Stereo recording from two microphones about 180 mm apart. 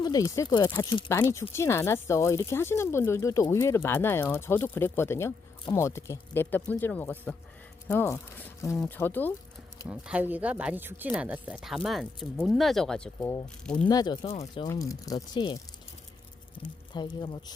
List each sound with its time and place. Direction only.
0.0 s speech: 20° left (ahead or behind)
9.9 s speech: 10° right (ahead or behind)
13.8 s speech: 25° left (ahead or behind)
14.7 s speech: 20° left (ahead or behind)
16.6 s speech: 25° left (ahead or behind)